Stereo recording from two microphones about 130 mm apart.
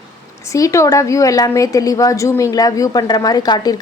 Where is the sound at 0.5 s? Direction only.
25° left (ahead or behind).